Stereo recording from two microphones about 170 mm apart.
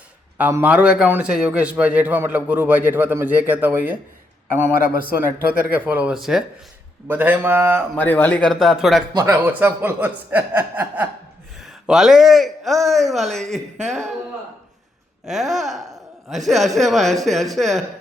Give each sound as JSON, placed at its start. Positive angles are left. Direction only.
{"t": 0.3, "sound": "a man's voice", "side_deg": -10}
{"t": 5.7, "sound": "a man's voice", "side_deg": -10}
{"t": 7.9, "sound": "a man's voice", "side_deg": 10}
{"t": 9.1, "sound": "speech", "side_deg": -20}
{"t": 9.4, "sound": "a man's voice", "side_deg": -10}
{"t": 15.3, "sound": "a man's voice", "side_deg": 0}